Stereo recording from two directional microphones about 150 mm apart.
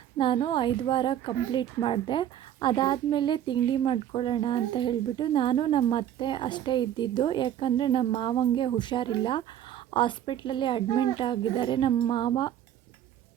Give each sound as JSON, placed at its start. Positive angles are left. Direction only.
{"t": 0.2, "sound": "a woman's voice", "side_deg": 35}